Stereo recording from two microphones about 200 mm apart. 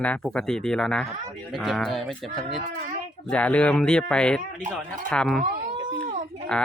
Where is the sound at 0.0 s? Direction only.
5° left (ahead or behind).